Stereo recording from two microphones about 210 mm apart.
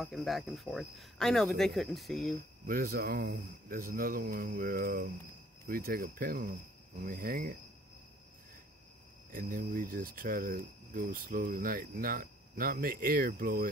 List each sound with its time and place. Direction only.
0.0 s speech: centre (ahead or behind)
2.6 s speech: 45° right (ahead or behind)
9.3 s speech: 40° right (ahead or behind)